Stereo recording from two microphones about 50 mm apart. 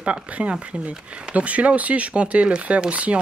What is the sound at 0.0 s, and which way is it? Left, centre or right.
Speech, right.